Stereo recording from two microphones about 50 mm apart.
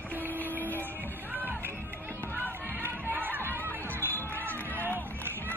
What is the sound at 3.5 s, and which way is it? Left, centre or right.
Music, left.